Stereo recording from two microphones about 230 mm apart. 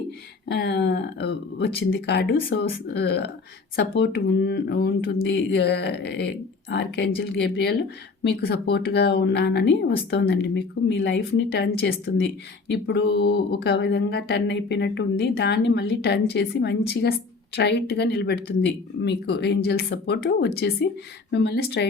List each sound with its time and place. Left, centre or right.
0.4 s speech: left